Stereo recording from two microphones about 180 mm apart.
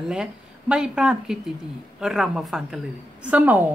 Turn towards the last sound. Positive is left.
turn(degrees=-10)  # may be behind; listen again after turning